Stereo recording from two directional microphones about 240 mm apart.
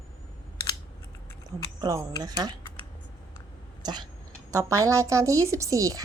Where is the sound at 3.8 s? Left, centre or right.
Centre.